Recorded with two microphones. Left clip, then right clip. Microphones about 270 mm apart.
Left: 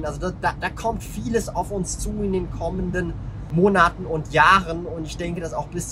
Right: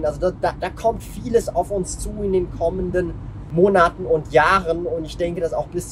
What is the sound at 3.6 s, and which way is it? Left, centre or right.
Speech, right.